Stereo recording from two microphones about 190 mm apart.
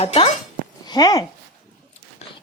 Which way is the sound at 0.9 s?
20° left (ahead or behind).